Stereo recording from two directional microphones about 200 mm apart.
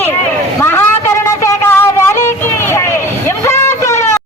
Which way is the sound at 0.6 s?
10° left (ahead or behind).